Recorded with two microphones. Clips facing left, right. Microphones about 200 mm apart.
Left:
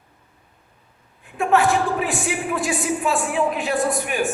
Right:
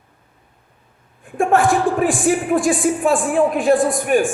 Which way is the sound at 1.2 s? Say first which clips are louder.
Right 3 dB; 50° right (ahead or behind).